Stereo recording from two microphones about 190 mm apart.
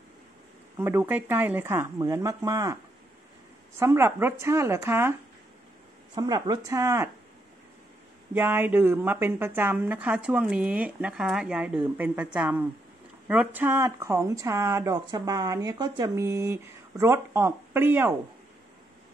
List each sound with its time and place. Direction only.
0.7 s speech: 10° right (ahead or behind)
3.8 s speech: 15° right (ahead or behind)
6.1 s speech: 20° right (ahead or behind)
8.4 s speech: 10° right (ahead or behind)